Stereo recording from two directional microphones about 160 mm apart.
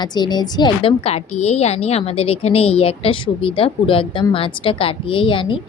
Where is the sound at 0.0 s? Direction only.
25° left (ahead or behind).